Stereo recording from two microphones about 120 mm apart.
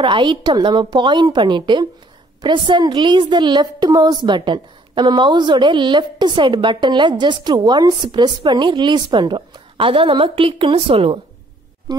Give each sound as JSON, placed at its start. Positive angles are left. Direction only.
{"t": 0.0, "sound": "a woman's voice", "side_deg": -45}